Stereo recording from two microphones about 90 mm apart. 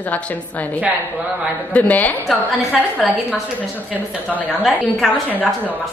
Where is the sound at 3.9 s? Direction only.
15° right (ahead or behind).